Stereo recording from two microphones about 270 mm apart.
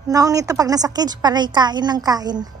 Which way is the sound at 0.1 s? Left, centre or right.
Centre.